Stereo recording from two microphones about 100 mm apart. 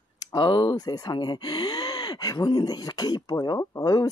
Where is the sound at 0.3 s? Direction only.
50° left (ahead or behind).